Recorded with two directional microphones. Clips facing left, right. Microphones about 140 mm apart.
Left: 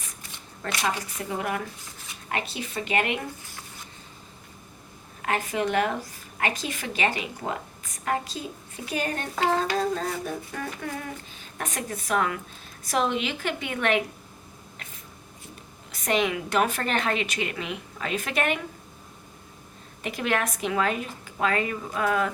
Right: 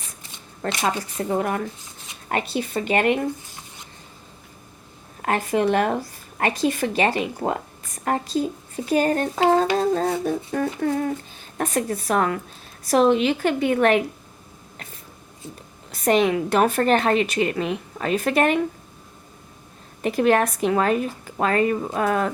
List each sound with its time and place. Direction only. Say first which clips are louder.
0.7 s speech: right 4 dB; 25° right (ahead or behind)
1.3 s speech: right 6 dB; 40° right (ahead or behind)
5.2 s speech: right 6 dB; 40° right (ahead or behind)
9.3 s speech: right 4 dB; 25° right (ahead or behind)
16.0 s speech: right 7 dB; 40° right (ahead or behind)
20.0 s speech: right 9 dB; 40° right (ahead or behind)